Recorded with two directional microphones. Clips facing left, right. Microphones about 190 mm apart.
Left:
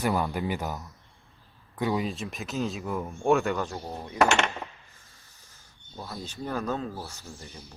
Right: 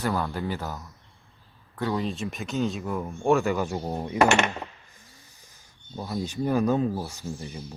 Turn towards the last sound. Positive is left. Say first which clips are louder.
# right 9 dB
turn(degrees=-15)  # may be behind; listen again after turning